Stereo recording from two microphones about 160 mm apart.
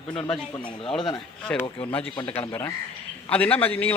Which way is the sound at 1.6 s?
35° left (ahead or behind).